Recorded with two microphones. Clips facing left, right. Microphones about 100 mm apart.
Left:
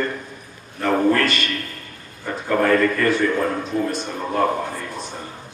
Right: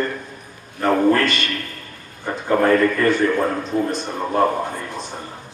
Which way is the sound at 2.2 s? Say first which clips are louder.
Right 2 dB; 30° right (ahead or behind).